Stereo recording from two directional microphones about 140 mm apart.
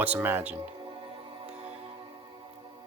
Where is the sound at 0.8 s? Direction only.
40° right (ahead or behind).